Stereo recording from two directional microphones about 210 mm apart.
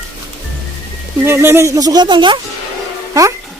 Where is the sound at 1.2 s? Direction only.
10° right (ahead or behind).